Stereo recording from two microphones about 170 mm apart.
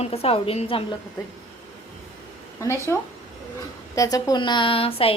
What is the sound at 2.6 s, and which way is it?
A woman's voice, 15° left (ahead or behind).